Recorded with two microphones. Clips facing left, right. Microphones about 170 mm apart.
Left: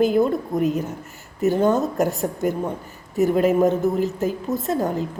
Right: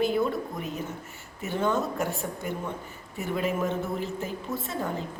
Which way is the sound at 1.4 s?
40° left (ahead or behind).